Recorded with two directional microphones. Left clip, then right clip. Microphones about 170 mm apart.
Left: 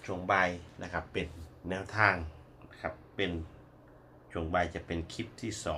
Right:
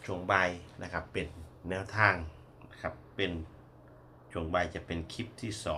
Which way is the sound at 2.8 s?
Centre (ahead or behind).